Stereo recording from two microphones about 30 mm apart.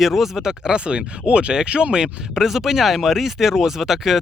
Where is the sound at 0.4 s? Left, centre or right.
Right.